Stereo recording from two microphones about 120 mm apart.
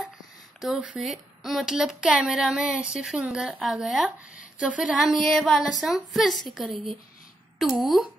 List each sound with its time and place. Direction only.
0.6 s a woman's voice: 5° right (ahead or behind)
5.2 s a woman's voice: centre (ahead or behind)